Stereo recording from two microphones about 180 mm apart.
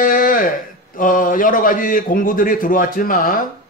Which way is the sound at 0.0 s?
50° left (ahead or behind).